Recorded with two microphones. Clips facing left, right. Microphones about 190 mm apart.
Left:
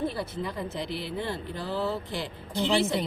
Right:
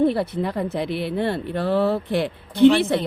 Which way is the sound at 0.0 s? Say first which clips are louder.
Right 11 dB; 65° right (ahead or behind).